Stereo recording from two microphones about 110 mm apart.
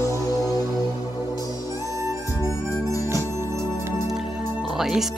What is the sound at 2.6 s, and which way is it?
Music, 30° left (ahead or behind).